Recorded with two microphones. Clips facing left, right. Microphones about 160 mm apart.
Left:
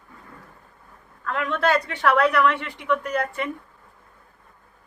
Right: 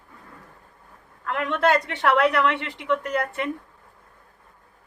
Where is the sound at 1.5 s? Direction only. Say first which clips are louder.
Right 1 dB; 20° right (ahead or behind).